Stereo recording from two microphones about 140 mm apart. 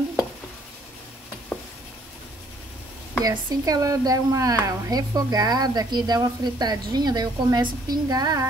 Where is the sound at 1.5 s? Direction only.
15° left (ahead or behind).